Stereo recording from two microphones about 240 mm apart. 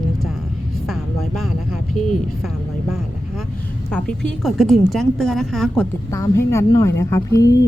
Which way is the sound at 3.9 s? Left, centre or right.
Centre.